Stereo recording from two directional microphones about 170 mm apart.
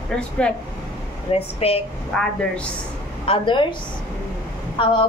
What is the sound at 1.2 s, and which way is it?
Speech, 35° left (ahead or behind).